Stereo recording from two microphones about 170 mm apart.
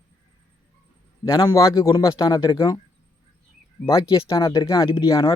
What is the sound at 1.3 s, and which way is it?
A man's voice, 20° left (ahead or behind).